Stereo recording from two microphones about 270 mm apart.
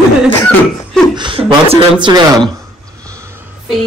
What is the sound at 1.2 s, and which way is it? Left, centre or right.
Speech, centre.